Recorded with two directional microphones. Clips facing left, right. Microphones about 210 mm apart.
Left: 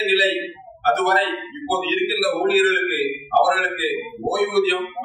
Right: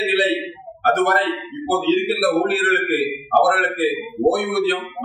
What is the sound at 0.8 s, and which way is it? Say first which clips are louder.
A man's voice: right 2 dB; 55° right (ahead or behind).